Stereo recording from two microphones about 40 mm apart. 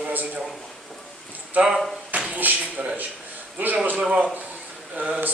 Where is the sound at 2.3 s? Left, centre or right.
Right.